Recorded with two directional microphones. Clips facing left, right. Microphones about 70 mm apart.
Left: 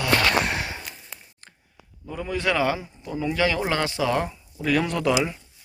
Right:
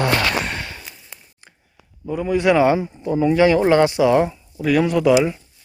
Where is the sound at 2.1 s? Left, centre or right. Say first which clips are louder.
Right 8 dB; centre.